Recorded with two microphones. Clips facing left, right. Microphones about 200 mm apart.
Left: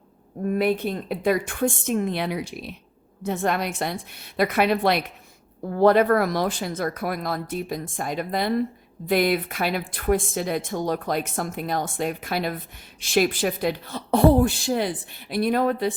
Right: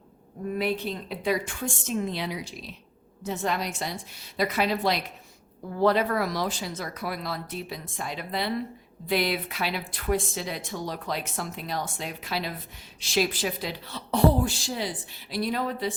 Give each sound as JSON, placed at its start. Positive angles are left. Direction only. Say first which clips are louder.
{"t": 0.4, "sound": "speech", "louder": "left 6 dB", "side_deg": 50}